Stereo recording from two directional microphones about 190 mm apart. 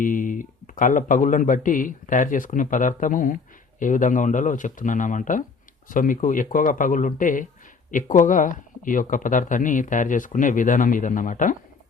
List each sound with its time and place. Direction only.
0.0 s speech: 45° left (ahead or behind)